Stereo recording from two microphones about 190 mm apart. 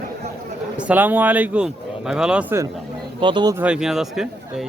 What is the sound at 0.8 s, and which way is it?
Speech, 10° right (ahead or behind).